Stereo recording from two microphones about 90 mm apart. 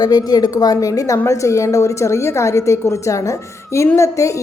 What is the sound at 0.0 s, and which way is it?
A woman's voice, 45° left (ahead or behind).